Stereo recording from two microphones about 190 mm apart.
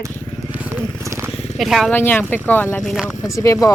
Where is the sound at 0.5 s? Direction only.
10° right (ahead or behind).